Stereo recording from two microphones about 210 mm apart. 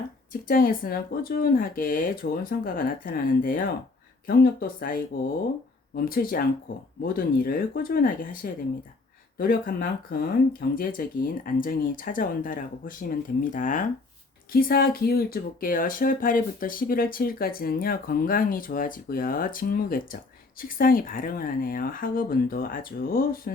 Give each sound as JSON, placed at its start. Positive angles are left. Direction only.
{"t": 0.4, "sound": "speech", "side_deg": 40}
{"t": 6.1, "sound": "speech", "side_deg": 45}